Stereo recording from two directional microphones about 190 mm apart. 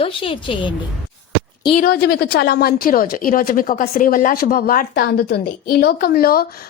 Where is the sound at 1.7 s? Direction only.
50° left (ahead or behind).